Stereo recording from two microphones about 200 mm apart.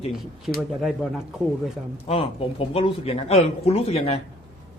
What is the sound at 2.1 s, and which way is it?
A man's voice, 30° left (ahead or behind).